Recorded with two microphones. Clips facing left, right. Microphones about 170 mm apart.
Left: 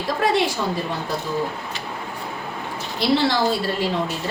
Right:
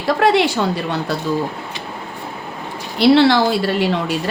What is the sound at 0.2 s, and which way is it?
Speech, 70° right (ahead or behind).